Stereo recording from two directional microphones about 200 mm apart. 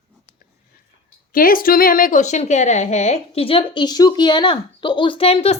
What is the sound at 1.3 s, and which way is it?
A woman's voice, 45° left (ahead or behind).